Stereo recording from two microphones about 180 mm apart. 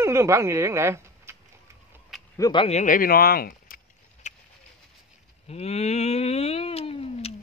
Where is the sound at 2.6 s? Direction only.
40° left (ahead or behind).